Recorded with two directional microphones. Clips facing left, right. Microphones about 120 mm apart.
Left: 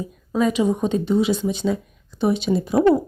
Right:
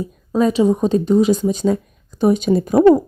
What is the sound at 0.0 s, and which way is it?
Speech, 35° right (ahead or behind).